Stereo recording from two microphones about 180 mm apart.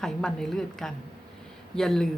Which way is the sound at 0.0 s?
5° left (ahead or behind).